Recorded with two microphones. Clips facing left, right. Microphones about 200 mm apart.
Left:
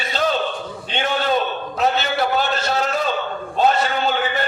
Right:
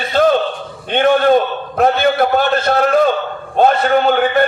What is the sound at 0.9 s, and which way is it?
A man's voice, 55° right (ahead or behind).